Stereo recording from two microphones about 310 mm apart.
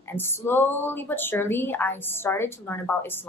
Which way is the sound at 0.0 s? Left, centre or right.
Centre.